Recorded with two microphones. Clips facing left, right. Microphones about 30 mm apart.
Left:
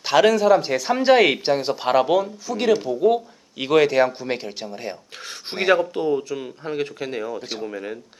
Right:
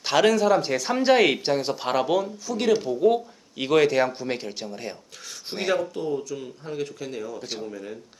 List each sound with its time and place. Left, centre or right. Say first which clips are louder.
0.0 s speech: left 3 dB; centre; by 7.3 s left
7.3 s speech: left 3 dB; centre
7.6 s speech: left 5 dB; left